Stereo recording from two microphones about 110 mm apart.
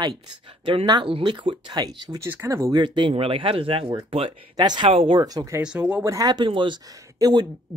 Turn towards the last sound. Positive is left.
turn(degrees=-35)  # may be behind; listen again after turning